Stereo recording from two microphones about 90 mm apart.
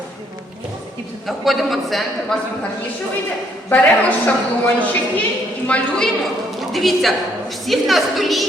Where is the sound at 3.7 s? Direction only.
20° left (ahead or behind).